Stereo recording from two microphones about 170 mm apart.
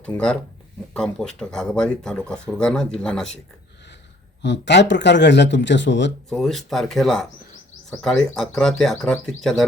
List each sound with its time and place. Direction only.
0.0 s speech: 5° left (ahead or behind)
4.4 s speech: 90° left
6.2 s speech: centre (ahead or behind)